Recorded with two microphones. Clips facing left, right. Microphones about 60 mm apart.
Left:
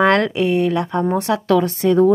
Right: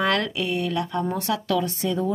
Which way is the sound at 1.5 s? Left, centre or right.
Left.